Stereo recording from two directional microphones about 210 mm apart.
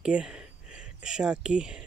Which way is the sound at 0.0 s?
5° right (ahead or behind).